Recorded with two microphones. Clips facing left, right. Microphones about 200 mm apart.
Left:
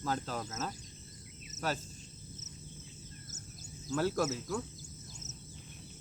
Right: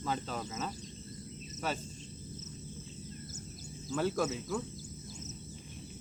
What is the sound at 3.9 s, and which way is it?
Speech, centre (ahead or behind).